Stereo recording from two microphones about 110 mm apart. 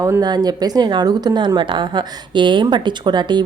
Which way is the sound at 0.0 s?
35° right (ahead or behind).